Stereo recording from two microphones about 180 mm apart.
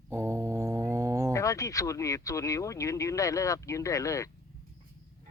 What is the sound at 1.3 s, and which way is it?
Speech, 15° left (ahead or behind).